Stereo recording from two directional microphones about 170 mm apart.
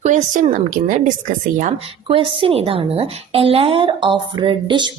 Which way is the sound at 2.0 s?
30° right (ahead or behind).